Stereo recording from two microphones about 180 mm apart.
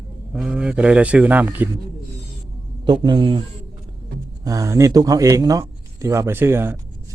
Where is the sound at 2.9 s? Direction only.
25° right (ahead or behind).